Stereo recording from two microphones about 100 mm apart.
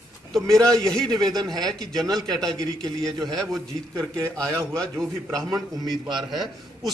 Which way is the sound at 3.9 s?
30° right (ahead or behind).